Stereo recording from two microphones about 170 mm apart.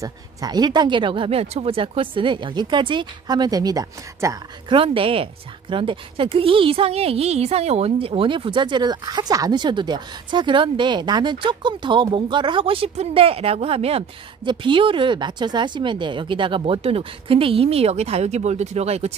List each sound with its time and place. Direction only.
0.0 s speech: 20° right (ahead or behind)
4.7 s speech: 30° right (ahead or behind)